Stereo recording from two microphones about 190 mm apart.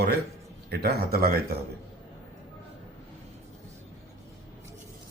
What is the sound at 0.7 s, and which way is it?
Speech, 55° right (ahead or behind).